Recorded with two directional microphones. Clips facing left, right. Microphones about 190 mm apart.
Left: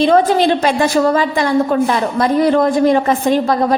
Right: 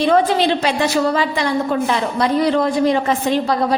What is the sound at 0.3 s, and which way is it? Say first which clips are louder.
A woman's voice: left 4 dB; 45° left (ahead or behind).